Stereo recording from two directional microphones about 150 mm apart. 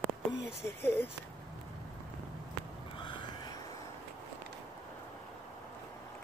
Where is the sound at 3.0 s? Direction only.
30° left (ahead or behind).